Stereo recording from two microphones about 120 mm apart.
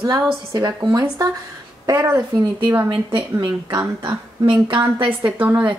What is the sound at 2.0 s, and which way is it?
Speech, 15° right (ahead or behind).